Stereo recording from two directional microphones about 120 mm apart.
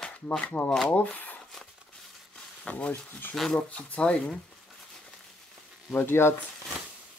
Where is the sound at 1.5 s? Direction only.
5° left (ahead or behind).